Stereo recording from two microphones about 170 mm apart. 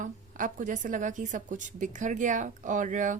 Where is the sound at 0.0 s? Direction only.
50° right (ahead or behind).